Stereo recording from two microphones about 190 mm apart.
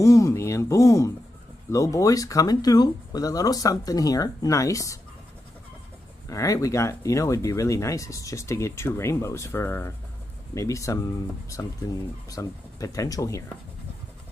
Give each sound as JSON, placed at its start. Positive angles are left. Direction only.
{"t": 0.0, "sound": "speech", "side_deg": 15}
{"t": 6.2, "sound": "speech", "side_deg": 15}